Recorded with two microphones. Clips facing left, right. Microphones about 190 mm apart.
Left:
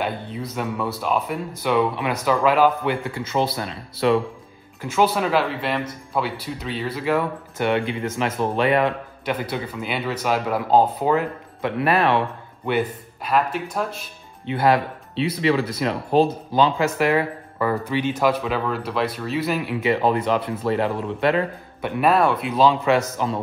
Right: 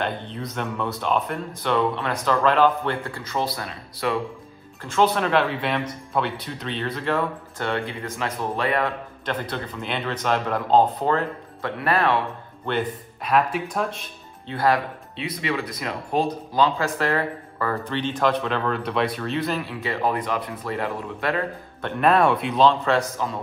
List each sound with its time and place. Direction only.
0.0 s speech: 5° left (ahead or behind)
3.2 s speech: 25° left (ahead or behind)
4.8 s speech: 5° left (ahead or behind); by 8.9 s 20° left (ahead or behind)
9.2 s speech: 10° left (ahead or behind)
12.6 s speech: 5° left (ahead or behind)
14.4 s speech: 20° left (ahead or behind); by 19.5 s 5° left (ahead or behind)
19.5 s speech: 20° left (ahead or behind)
21.8 s speech: 5° left (ahead or behind)